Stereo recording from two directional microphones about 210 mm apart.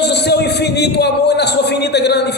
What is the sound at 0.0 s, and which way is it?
Speech, 50° left (ahead or behind).